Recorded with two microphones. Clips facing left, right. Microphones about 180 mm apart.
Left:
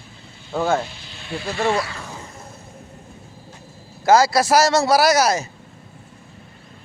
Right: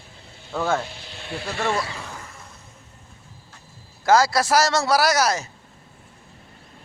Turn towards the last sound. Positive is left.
turn(degrees=10)  # may be behind; listen again after turning